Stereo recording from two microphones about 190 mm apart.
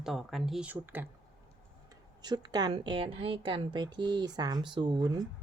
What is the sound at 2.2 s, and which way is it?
A woman's voice, 20° right (ahead or behind).